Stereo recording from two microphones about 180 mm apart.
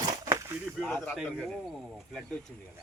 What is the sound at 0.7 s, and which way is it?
Speech, 5° left (ahead or behind).